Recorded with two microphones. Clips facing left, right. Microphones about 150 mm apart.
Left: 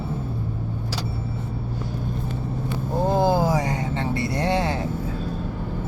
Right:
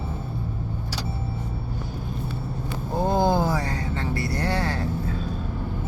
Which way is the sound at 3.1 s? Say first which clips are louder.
Left 1 dB; centre (ahead or behind).